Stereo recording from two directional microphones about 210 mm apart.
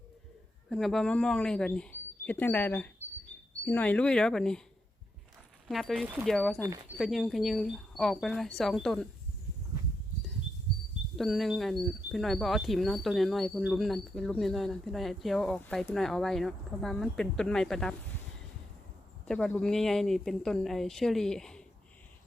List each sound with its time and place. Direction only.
0.7 s speech: centre (ahead or behind)
5.6 s speech: 5° left (ahead or behind)
6.6 s speech: 15° right (ahead or behind)
7.0 s speech: centre (ahead or behind)
11.2 s speech: centre (ahead or behind)
19.3 s speech: 5° left (ahead or behind)